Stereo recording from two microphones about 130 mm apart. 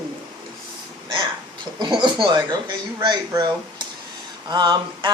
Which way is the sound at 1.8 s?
35° right (ahead or behind).